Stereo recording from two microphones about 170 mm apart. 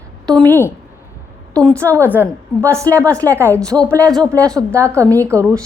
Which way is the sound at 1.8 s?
15° right (ahead or behind).